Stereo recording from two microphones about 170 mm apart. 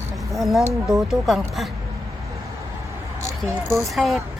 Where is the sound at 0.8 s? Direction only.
Centre (ahead or behind).